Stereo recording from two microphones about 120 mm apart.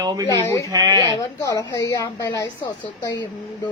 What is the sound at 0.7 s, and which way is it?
Speech, 35° right (ahead or behind).